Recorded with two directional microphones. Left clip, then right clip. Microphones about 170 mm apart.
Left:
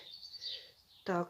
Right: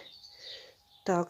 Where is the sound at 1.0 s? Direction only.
45° right (ahead or behind).